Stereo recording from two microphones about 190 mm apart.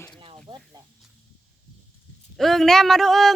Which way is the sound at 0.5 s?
25° right (ahead or behind).